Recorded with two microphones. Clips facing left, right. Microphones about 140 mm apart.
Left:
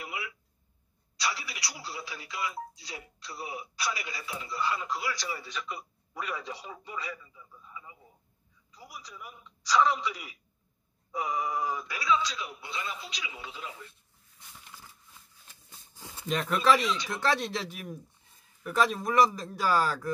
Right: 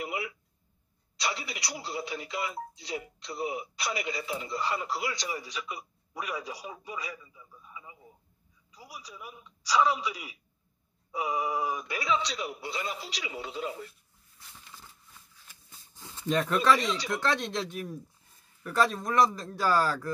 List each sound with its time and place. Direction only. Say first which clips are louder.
0.0 s a sound: right 5 dB; 25° right (ahead or behind)
1.1 s a man's voice: right 1 dB; 25° right (ahead or behind)
11.9 s speech: left 3 dB; 30° right (ahead or behind)
16.3 s speech: right 1 dB; 5° left (ahead or behind)
16.8 s speech: even; 30° right (ahead or behind)
17.2 s speech: left 1 dB; 5° left (ahead or behind)
18.6 s speech: even; 5° left (ahead or behind)